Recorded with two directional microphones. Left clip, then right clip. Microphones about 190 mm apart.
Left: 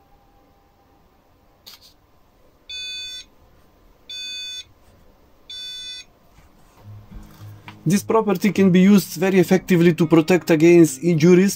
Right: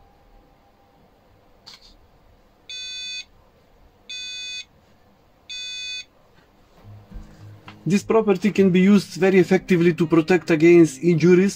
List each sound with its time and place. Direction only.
7.9 s speech: 55° left (ahead or behind)